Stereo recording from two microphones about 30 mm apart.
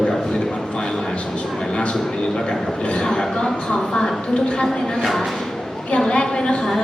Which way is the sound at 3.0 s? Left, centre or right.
Left.